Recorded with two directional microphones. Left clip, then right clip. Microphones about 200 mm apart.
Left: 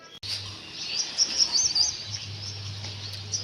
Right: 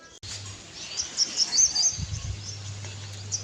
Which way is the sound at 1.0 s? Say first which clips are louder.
Left 1 dB; 55° right (ahead or behind).